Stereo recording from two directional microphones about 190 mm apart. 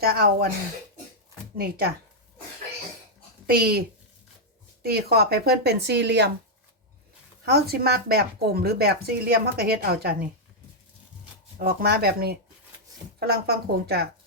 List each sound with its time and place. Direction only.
0.0 s speech: 55° right (ahead or behind)
1.5 s speech: 55° right (ahead or behind)
3.4 s a woman's voice: 55° right (ahead or behind)
7.4 s speech: 55° right (ahead or behind)
11.6 s speech: 55° right (ahead or behind)